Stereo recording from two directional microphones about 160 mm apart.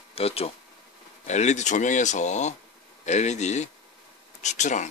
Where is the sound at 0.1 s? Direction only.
40° left (ahead or behind).